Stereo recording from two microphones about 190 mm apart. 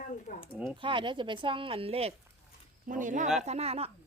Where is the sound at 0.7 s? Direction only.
25° right (ahead or behind).